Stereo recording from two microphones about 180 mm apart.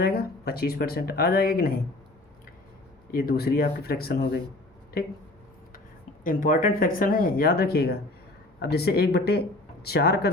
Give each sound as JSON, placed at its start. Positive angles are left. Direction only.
{"t": 0.0, "sound": "speech", "side_deg": 60}
{"t": 3.1, "sound": "speech", "side_deg": 60}
{"t": 6.2, "sound": "speech", "side_deg": 50}